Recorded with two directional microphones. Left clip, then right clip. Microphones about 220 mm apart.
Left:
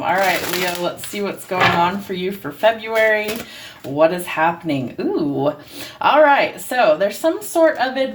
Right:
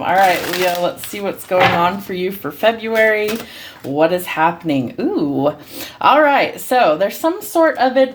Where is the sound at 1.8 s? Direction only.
55° right (ahead or behind).